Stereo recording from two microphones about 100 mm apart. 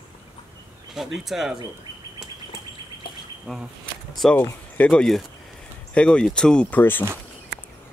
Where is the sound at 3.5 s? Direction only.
5° left (ahead or behind).